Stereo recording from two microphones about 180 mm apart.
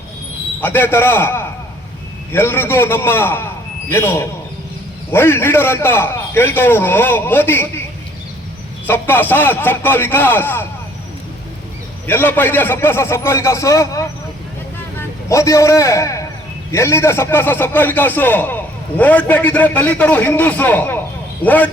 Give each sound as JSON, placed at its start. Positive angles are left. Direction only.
{"t": 0.6, "sound": "a man's voice", "side_deg": 10}
{"t": 8.9, "sound": "a man's voice", "side_deg": 10}
{"t": 12.0, "sound": "a man's voice", "side_deg": 10}